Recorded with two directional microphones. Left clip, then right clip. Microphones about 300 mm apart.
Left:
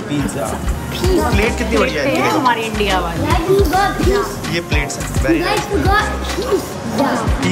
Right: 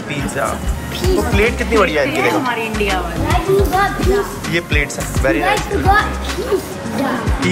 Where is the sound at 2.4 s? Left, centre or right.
Left.